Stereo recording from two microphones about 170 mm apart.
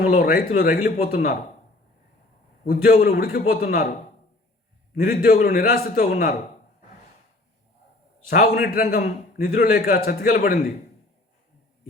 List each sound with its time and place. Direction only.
0.0 s a man's voice: 55° left (ahead or behind)
2.8 s a man's voice: 55° left (ahead or behind)
5.0 s a man's voice: 50° left (ahead or behind)
8.3 s a man's voice: 50° left (ahead or behind)